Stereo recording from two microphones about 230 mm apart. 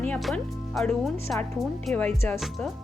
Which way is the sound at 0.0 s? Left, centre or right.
Centre.